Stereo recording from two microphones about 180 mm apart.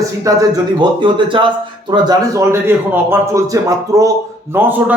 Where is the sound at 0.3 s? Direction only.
20° right (ahead or behind).